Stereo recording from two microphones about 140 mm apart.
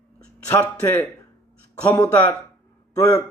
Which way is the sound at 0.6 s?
15° left (ahead or behind).